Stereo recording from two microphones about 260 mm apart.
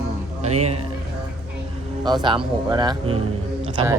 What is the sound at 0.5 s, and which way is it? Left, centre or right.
Speech, right.